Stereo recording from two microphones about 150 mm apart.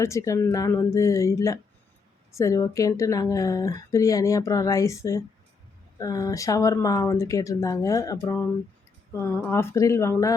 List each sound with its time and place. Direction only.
0.0 s speech: 20° left (ahead or behind)